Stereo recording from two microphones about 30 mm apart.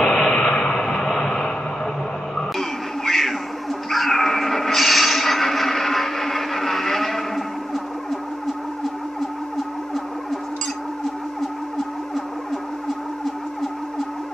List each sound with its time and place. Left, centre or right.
0.0 s a sound: left
3.1 s music: centre
3.9 s dog: centre